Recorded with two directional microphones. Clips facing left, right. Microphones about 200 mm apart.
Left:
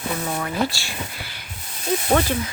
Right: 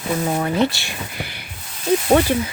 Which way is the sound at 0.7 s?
20° right (ahead or behind).